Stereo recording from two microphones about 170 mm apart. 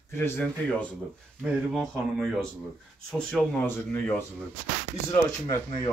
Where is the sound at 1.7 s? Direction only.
Centre (ahead or behind).